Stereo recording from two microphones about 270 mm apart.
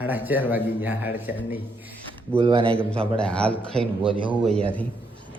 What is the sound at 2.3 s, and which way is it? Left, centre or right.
Speech, centre.